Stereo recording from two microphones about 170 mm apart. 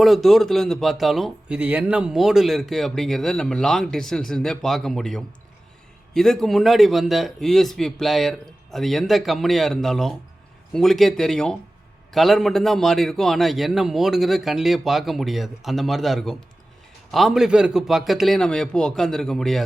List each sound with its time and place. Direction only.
0.0 s speech: centre (ahead or behind)